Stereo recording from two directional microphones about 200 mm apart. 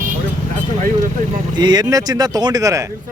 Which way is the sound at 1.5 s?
20° right (ahead or behind).